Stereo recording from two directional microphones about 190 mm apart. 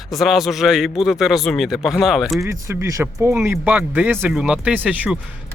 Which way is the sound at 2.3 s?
15° right (ahead or behind).